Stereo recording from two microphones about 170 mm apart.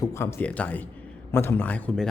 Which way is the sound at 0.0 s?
15° left (ahead or behind).